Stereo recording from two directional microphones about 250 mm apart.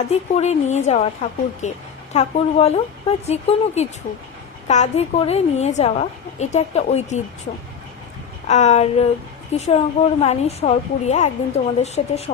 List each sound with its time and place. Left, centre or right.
0.1 s a woman's voice: left
8.4 s a woman's voice: left